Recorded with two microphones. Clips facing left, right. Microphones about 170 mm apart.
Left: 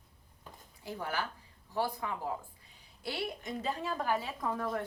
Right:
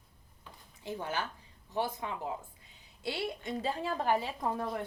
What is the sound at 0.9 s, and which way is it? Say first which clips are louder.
A woman's voice: right 1 dB; 20° right (ahead or behind).